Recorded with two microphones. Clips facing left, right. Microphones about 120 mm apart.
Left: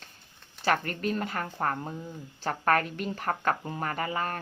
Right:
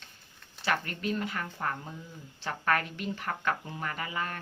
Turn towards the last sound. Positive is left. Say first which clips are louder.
# left 4 dB
turn(degrees=40)  # may be behind; listen again after turning